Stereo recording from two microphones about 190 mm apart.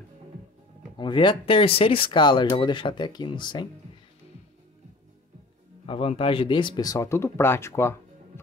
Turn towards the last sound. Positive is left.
turn(degrees=15)  # may be behind; listen again after turning